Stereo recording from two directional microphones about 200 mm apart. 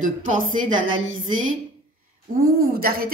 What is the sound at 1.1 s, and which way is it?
Speech, 75° right (ahead or behind).